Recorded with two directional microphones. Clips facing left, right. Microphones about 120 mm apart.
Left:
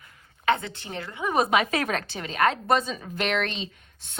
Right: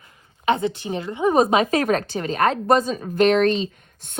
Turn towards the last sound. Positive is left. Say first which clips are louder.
# right 3 dB
turn(degrees=-45)  # may be behind; listen again after turning